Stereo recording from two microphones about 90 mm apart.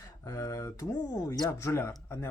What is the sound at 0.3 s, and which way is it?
Speech, 35° left (ahead or behind).